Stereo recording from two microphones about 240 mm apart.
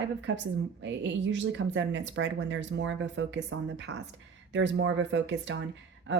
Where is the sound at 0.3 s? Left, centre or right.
Right.